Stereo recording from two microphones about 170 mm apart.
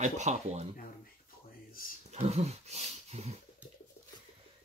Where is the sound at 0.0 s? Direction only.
45° right (ahead or behind).